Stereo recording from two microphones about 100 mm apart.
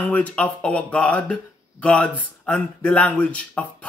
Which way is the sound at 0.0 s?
15° left (ahead or behind).